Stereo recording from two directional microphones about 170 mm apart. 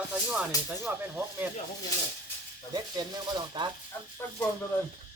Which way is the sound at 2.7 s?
25° right (ahead or behind).